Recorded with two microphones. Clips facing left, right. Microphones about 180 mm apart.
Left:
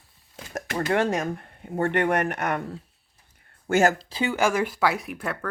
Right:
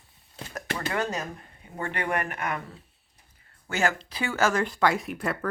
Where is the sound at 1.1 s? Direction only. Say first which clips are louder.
Left 6 dB; 60° left (ahead or behind); by 2.4 s 75° left (ahead or behind).